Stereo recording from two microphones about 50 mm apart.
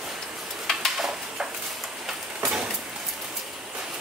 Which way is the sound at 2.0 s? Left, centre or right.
Centre.